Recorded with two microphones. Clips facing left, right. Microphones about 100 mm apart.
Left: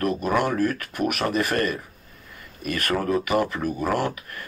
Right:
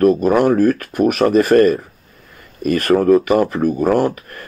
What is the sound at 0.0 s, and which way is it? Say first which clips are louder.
Speech: right 10 dB; 40° right (ahead or behind).